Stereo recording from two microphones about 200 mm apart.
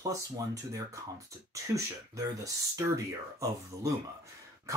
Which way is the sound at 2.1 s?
15° right (ahead or behind).